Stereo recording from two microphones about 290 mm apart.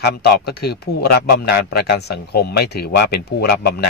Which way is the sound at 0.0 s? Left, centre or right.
Left.